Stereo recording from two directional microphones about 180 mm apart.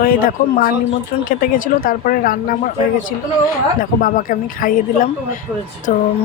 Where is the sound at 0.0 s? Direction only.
55° left (ahead or behind).